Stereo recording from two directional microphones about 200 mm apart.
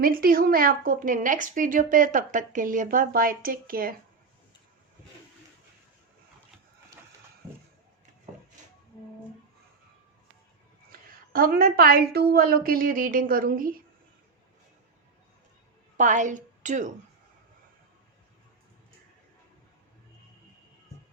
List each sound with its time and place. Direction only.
0.0 s a woman's voice: 45° right (ahead or behind)
10.9 s a woman's voice: 45° right (ahead or behind)
16.0 s a woman's voice: 40° right (ahead or behind)